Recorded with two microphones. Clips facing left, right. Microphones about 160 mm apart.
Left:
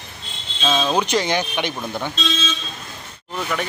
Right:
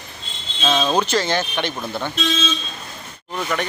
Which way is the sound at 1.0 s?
15° left (ahead or behind).